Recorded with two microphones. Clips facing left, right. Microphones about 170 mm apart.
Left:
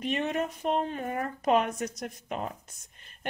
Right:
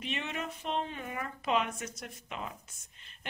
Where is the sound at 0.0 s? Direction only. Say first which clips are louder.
Left 8 dB; 45° left (ahead or behind).